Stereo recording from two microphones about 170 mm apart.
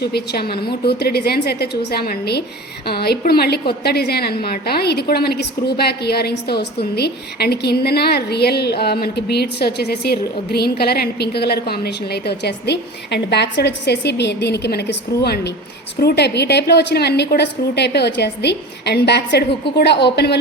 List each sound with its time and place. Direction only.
0.0 s a woman's voice: 75° left (ahead or behind)